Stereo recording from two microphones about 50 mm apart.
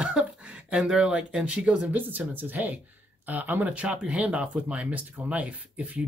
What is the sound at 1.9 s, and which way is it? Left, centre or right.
Speech, right.